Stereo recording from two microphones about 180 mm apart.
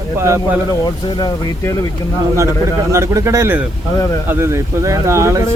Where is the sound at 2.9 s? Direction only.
15° right (ahead or behind).